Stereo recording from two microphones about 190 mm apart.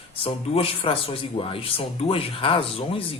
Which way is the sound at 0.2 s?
30° left (ahead or behind).